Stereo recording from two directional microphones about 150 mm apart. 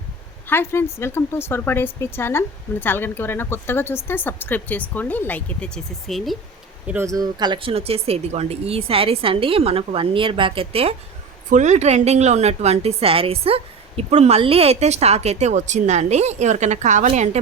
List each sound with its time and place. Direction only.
0.4 s speech: 15° left (ahead or behind)
6.8 s speech: 15° right (ahead or behind); by 10.9 s 40° right (ahead or behind)
11.5 s a woman's voice: 50° right (ahead or behind)